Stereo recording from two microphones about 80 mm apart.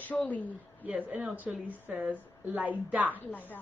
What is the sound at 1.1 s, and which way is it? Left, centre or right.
A woman's voice, right.